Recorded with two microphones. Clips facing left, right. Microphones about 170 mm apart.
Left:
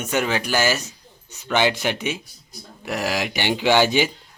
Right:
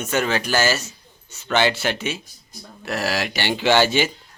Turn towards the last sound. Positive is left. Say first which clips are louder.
# even
turn(degrees=15)  # may be behind; listen again after turning